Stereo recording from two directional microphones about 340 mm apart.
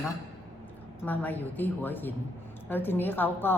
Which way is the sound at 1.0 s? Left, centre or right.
Centre.